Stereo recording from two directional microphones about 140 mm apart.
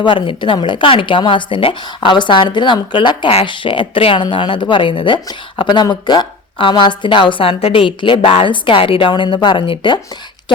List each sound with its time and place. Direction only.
0.0 s speech: 35° left (ahead or behind)